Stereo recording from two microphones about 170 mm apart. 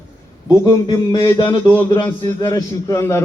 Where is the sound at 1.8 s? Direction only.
25° left (ahead or behind).